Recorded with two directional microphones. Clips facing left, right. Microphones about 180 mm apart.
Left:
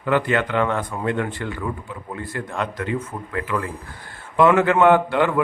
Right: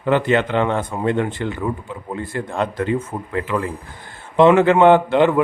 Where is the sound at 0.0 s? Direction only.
25° right (ahead or behind).